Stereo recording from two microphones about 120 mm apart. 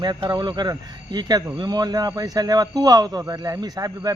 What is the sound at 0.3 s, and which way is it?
Speech, 35° right (ahead or behind).